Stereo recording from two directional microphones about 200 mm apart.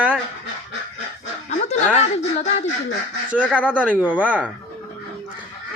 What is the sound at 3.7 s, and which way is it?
Speech, 5° right (ahead or behind).